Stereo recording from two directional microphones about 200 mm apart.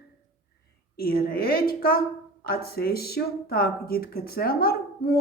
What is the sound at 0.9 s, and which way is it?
Speech, 50° left (ahead or behind).